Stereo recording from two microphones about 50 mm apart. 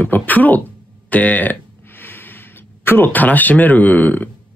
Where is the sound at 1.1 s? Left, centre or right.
Left.